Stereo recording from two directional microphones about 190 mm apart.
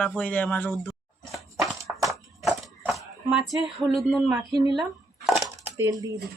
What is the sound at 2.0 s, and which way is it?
Clip-clop, centre (ahead or behind).